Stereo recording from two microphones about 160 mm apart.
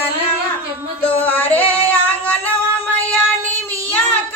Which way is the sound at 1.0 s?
10° left (ahead or behind).